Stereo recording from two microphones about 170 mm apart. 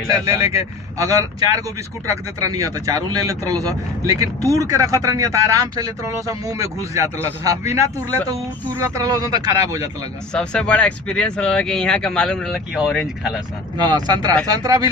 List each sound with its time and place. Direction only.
0.1 s a man's voice: 20° right (ahead or behind)
8.8 s a man's voice: 20° right (ahead or behind)
10.3 s speech: 5° left (ahead or behind)
13.7 s a man's voice: 25° right (ahead or behind)